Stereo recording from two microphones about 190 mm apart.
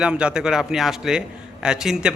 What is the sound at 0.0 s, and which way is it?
A man's voice, 5° right (ahead or behind).